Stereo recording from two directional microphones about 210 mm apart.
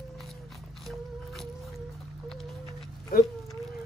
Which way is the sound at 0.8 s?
Centre (ahead or behind).